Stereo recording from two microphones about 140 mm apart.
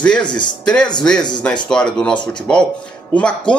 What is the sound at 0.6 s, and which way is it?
Speech, 5° left (ahead or behind).